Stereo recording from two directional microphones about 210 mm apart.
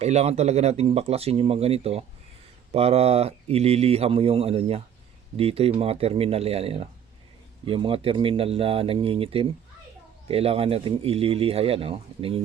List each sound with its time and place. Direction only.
0.0 s speech: 30° right (ahead or behind)